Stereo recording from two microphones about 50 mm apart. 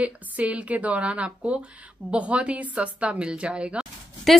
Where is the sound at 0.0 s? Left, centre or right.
Right.